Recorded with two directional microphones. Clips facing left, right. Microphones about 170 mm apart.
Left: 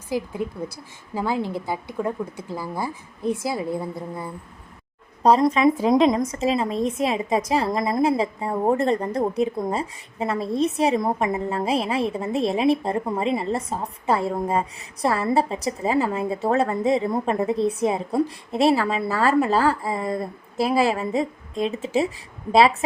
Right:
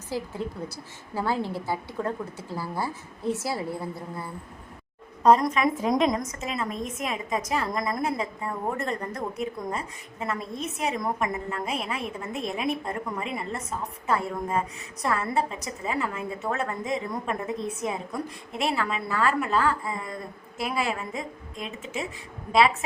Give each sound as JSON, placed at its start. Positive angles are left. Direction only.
{"t": 0.1, "sound": "speech", "side_deg": 15}
{"t": 5.2, "sound": "speech", "side_deg": 30}